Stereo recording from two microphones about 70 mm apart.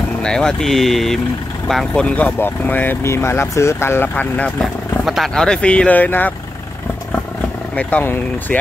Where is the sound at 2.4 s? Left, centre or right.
Left.